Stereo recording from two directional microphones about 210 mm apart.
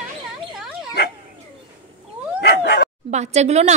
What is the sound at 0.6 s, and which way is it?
Dog, centre (ahead or behind).